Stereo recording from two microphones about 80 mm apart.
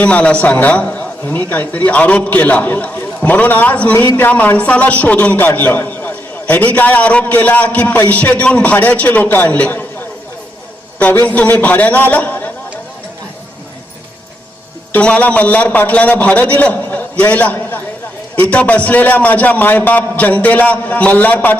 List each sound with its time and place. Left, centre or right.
0.0 s a man's voice: centre
11.0 s a man's voice: left
14.9 s a man's voice: centre